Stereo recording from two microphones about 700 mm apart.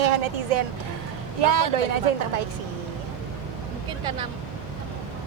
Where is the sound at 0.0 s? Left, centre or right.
Right.